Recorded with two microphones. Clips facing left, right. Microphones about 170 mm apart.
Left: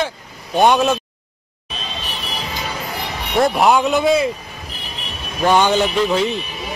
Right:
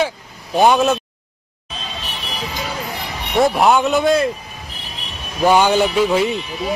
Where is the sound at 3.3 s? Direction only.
Centre (ahead or behind).